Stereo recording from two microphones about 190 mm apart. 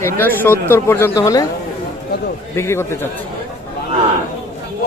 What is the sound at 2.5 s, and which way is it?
Speech, 15° left (ahead or behind).